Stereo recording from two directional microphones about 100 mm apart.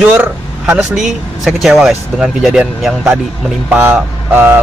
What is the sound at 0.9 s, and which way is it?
Speech, 5° right (ahead or behind).